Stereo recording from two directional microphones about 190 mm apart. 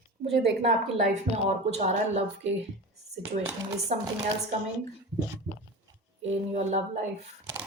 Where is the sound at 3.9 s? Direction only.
35° right (ahead or behind).